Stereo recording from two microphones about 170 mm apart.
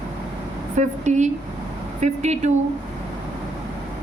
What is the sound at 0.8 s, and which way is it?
A woman's voice, 45° right (ahead or behind).